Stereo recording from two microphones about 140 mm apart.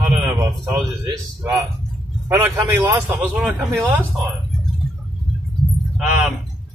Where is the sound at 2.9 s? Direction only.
10° right (ahead or behind).